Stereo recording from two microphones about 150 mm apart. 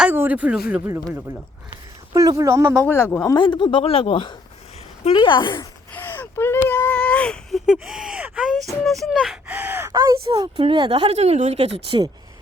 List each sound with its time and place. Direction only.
0.0 s speech: 10° right (ahead or behind)
2.8 s speech: 15° left (ahead or behind)
3.3 s speech: 35° left (ahead or behind)
5.9 s speech: 15° left (ahead or behind)
7.7 s speech: 5° right (ahead or behind); by 10.2 s 20° right (ahead or behind)
10.6 s speech: 35° right (ahead or behind)
11.1 s speech: 45° right (ahead or behind)